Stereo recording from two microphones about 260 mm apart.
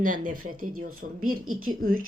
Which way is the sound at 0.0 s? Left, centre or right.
Right.